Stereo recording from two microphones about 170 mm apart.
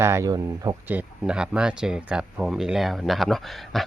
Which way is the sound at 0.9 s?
10° right (ahead or behind).